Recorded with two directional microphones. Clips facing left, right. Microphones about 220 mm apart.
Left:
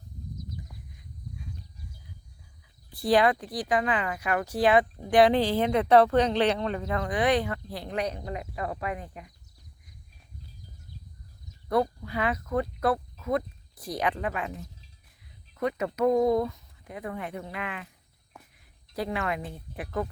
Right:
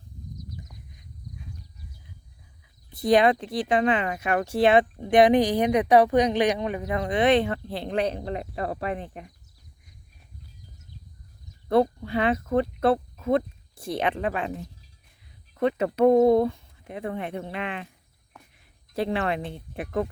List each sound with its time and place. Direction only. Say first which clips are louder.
2.9 s a woman's voice: right 3 dB; 20° right (ahead or behind)
11.7 s speech: right 5 dB; 25° right (ahead or behind)
15.5 s a woman's voice: right 5 dB; 30° right (ahead or behind)
18.9 s a woman's voice: right 4 dB; 30° right (ahead or behind)